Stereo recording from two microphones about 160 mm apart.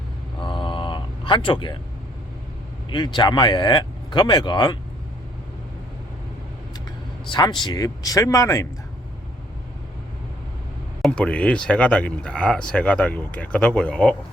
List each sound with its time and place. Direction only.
0.3 s a sound: 30° left (ahead or behind)
2.9 s speech: 30° left (ahead or behind)
7.3 s speech: 30° left (ahead or behind)
11.0 s speech: 5° left (ahead or behind)